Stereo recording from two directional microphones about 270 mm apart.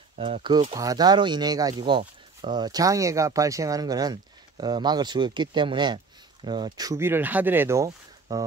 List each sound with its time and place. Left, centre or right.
0.2 s speech: centre